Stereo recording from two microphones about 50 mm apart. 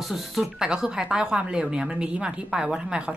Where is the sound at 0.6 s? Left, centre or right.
Centre.